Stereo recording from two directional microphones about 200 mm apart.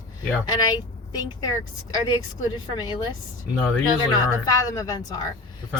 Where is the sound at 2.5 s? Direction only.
20° left (ahead or behind).